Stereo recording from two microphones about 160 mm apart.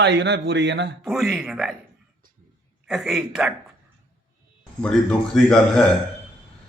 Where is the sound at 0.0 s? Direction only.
90° right.